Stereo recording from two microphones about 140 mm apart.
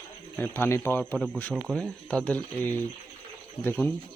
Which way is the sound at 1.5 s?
Centre (ahead or behind).